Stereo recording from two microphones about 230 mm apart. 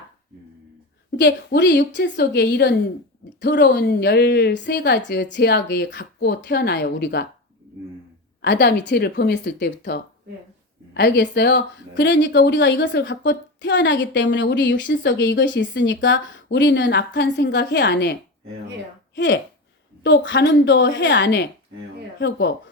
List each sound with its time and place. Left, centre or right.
1.1 s speech: left
8.4 s speech: left